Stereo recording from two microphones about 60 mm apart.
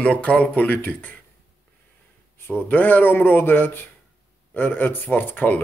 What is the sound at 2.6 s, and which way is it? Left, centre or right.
Speech, left.